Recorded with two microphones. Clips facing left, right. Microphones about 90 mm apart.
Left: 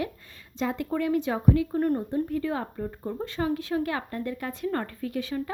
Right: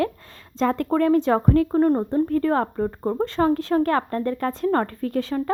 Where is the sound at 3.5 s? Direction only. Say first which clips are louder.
Right 8 dB; 45° right (ahead or behind).